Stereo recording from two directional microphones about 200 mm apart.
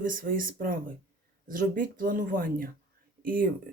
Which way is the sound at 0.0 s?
45° right (ahead or behind).